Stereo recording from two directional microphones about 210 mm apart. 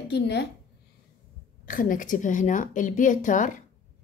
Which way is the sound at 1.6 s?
40° left (ahead or behind).